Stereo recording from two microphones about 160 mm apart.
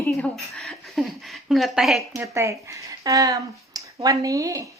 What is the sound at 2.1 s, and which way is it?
Speech, 15° right (ahead or behind).